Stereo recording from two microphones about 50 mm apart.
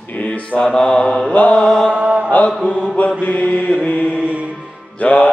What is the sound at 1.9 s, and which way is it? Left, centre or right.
Mantra, right.